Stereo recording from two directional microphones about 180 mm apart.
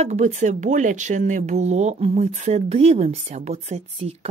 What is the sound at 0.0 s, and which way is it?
Speech, 40° right (ahead or behind).